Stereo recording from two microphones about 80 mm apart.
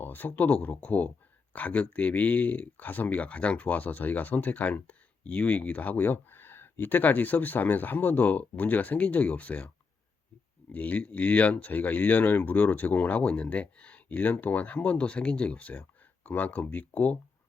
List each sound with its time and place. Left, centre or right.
0.0 s speech: left